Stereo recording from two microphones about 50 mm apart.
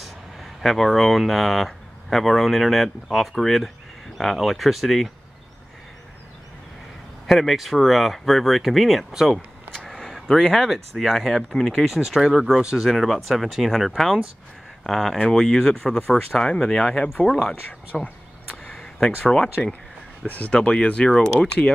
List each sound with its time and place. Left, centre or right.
0.0 s speech: centre
7.2 s speech: centre
9.8 s a sound: centre
10.2 s speech: centre
18.7 s a sound: centre
19.2 s speech: centre
20.2 s speech: left
20.5 s speech: centre